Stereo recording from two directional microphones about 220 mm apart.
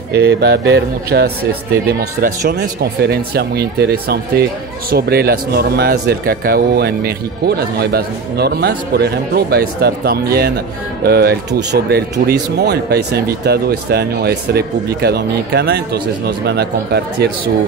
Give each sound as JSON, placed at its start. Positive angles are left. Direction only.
{"t": 0.1, "sound": "speech", "side_deg": -50}